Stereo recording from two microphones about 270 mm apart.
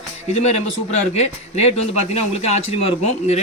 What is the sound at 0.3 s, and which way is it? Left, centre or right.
A man's voice, left.